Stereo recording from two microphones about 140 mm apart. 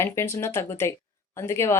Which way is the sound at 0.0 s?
20° left (ahead or behind).